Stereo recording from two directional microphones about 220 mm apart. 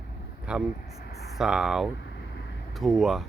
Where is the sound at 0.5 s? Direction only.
5° right (ahead or behind).